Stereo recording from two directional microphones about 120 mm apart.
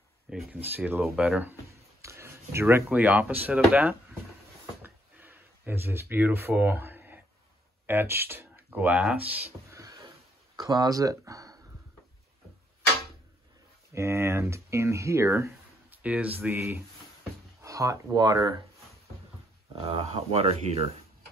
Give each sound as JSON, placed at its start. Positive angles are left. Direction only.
{"t": 0.5, "sound": "speech", "side_deg": -15}
{"t": 1.7, "sound": "speech", "side_deg": -25}
{"t": 4.8, "sound": "a sound", "side_deg": -15}
{"t": 7.8, "sound": "speech", "side_deg": -15}
{"t": 9.8, "sound": "a sound", "side_deg": -30}
{"t": 10.5, "sound": "speech", "side_deg": -35}
{"t": 13.9, "sound": "speech", "side_deg": -25}
{"t": 19.8, "sound": "speech", "side_deg": -50}